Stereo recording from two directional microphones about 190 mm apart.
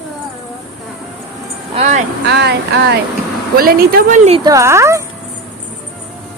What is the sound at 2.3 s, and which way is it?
Speech, 60° right (ahead or behind).